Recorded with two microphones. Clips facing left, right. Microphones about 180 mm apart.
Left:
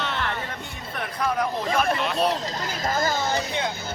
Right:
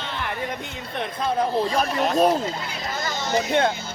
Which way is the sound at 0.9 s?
30° right (ahead or behind).